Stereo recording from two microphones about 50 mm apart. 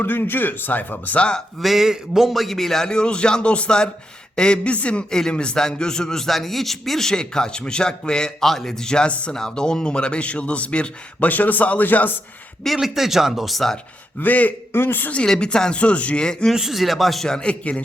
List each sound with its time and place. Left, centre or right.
0.0 s speech: left
1.6 s a man's voice: centre; by 9.3 s left
9.3 s a man's voice: centre
11.3 s speech: left
12.6 s speech: centre
14.2 s speech: left
14.7 s a man's voice: left
15.4 s a man's voice: centre
16.6 s speech: centre
17.2 s a man's voice: centre